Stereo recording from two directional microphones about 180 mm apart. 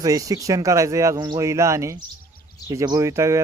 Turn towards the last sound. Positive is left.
turn(degrees=-15)  # may be behind; listen again after turning